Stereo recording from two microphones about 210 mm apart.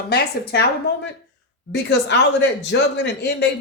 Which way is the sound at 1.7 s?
55° left (ahead or behind).